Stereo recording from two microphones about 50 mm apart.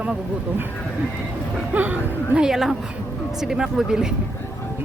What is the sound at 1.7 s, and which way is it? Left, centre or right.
Speech, right.